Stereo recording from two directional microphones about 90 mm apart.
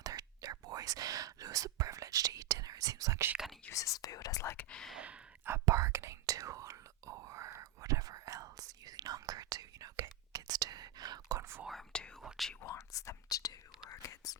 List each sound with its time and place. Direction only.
0.0 s whispering: 45° right (ahead or behind)
3.7 s speech: 40° left (ahead or behind)
4.5 s speech: 10° left (ahead or behind)
4.9 s speech: 15° right (ahead or behind)
5.6 s whispering: 35° right (ahead or behind)
11.6 s whispering: centre (ahead or behind)
12.6 s whispering: 35° left (ahead or behind)